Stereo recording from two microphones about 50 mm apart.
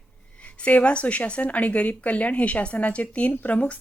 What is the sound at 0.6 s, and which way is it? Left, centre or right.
Speech, left.